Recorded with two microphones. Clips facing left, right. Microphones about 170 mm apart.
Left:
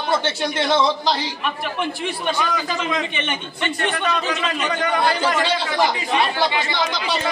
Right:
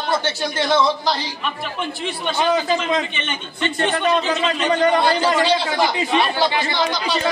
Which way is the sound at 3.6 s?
30° right (ahead or behind).